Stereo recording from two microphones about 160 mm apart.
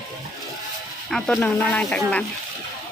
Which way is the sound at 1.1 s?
5° left (ahead or behind).